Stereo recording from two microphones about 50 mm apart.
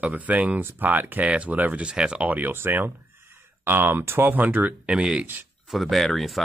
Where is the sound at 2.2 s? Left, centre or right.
Right.